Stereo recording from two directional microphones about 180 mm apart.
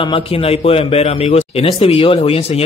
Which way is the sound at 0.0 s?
30° left (ahead or behind).